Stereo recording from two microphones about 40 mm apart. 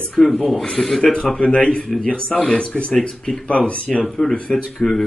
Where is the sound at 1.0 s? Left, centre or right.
Left.